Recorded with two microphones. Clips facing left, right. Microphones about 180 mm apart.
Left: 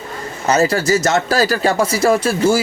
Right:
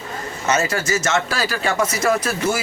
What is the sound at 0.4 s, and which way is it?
Speech, 35° left (ahead or behind).